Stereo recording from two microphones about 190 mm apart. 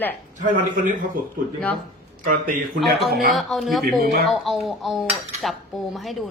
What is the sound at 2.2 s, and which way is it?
Speech, 45° right (ahead or behind).